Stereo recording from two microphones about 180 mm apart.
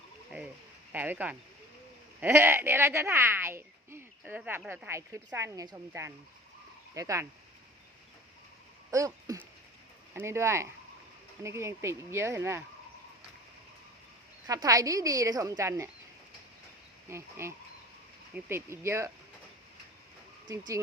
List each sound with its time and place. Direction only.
0.3 s a sound: 10° right (ahead or behind)
0.9 s a woman's voice: 10° right (ahead or behind)
8.9 s a woman's voice: 20° right (ahead or behind)
14.4 s speech: 20° right (ahead or behind)
17.1 s a woman's voice: 15° right (ahead or behind)
20.5 s speech: 20° right (ahead or behind)